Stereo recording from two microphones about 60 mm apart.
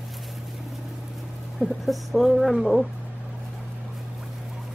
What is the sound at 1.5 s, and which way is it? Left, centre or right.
Speech, centre.